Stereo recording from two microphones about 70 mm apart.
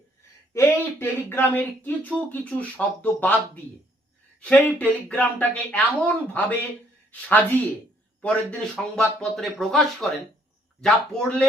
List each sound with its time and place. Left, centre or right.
0.5 s speech: left; by 11.4 s centre